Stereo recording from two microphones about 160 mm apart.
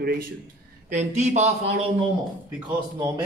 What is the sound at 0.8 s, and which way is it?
Speech, 45° right (ahead or behind).